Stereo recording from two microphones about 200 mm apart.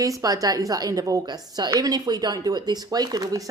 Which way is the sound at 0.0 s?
15° right (ahead or behind).